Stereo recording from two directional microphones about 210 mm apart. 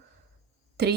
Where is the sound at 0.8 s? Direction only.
50° right (ahead or behind).